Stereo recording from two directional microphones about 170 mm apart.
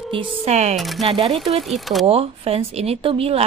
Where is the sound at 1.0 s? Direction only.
35° right (ahead or behind).